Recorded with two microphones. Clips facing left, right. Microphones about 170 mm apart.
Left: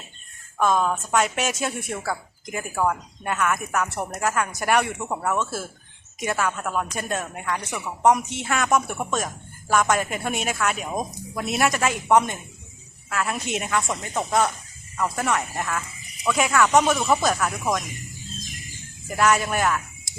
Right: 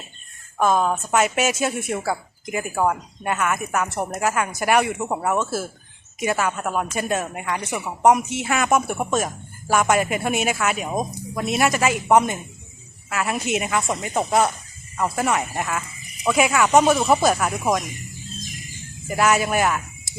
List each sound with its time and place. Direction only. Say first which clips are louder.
0.6 s a woman's voice: right 2 dB; 5° right (ahead or behind)
2.7 s speech: right 2 dB; 15° right (ahead or behind)
3.2 s a woman's voice: right 1 dB; 5° right (ahead or behind)
4.9 s speech: right 3 dB; 20° right (ahead or behind)
7.8 s speech: right 2 dB; 20° right (ahead or behind)
8.1 s speech: right 3 dB; 5° right (ahead or behind)
16.8 s speech: right 4 dB; 20° right (ahead or behind)
18.0 s a sound: right 2 dB; centre (ahead or behind)